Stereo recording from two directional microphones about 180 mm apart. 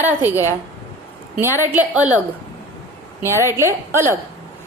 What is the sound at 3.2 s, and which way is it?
Speech, 15° right (ahead or behind).